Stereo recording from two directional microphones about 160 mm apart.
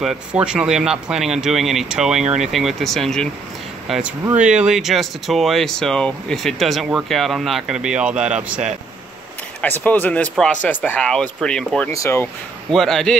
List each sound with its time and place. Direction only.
0.0 s speech: 5° right (ahead or behind)
9.6 s speech: 10° left (ahead or behind)
11.9 s speech: 20° left (ahead or behind)
12.7 s speech: centre (ahead or behind)